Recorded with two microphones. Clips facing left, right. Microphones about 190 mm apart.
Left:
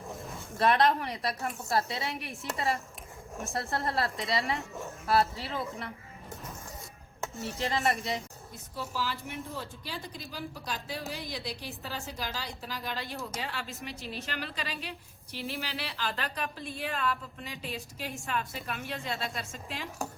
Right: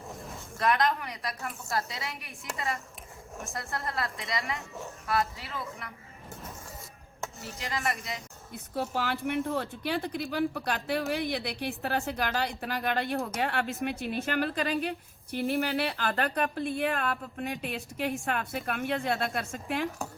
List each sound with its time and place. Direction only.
0.6 s a woman's voice: 30° left (ahead or behind)
7.2 s a sound: centre (ahead or behind)
7.6 s a woman's voice: 30° left (ahead or behind)
8.5 s a woman's voice: 60° right (ahead or behind)